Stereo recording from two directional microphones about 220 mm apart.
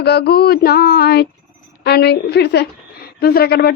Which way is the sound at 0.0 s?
45° left (ahead or behind).